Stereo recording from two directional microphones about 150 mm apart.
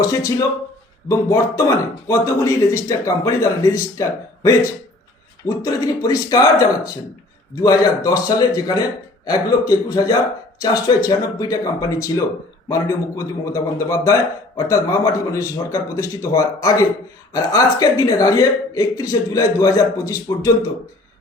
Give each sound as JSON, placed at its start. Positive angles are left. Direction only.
{"t": 0.1, "sound": "a man's voice", "side_deg": 25}
{"t": 5.6, "sound": "a man's voice", "side_deg": 25}